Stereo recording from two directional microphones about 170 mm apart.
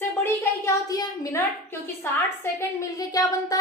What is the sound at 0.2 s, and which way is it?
A woman's voice, 15° left (ahead or behind).